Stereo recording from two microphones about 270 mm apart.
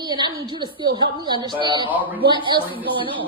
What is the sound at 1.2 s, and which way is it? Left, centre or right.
Speech, centre.